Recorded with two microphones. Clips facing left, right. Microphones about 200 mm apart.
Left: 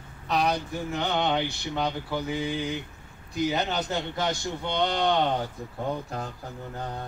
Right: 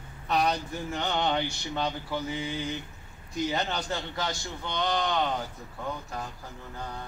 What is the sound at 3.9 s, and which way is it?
A man's voice, 20° left (ahead or behind).